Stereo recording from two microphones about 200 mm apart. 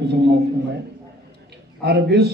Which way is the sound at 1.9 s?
55° right (ahead or behind).